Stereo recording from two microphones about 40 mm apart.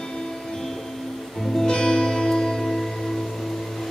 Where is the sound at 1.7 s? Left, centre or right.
Centre.